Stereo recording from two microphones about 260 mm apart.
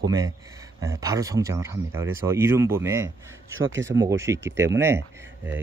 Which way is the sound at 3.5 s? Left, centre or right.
Right.